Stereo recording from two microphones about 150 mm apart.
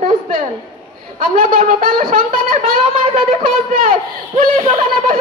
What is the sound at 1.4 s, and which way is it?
Speech, 65° right (ahead or behind).